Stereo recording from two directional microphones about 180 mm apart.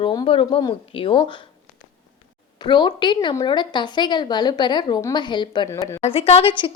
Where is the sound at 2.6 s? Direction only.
25° left (ahead or behind).